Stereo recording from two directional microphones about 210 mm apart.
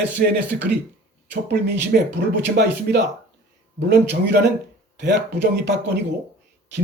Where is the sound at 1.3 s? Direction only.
55° right (ahead or behind).